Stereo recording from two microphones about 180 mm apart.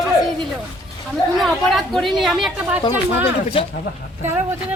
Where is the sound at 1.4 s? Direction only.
Centre (ahead or behind).